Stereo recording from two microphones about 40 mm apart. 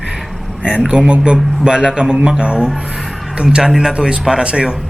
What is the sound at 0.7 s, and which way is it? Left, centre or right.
A man's voice, right.